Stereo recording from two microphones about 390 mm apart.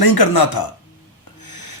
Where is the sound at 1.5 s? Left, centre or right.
Left.